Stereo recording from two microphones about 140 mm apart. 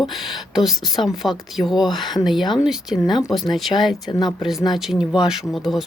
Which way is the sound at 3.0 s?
25° left (ahead or behind).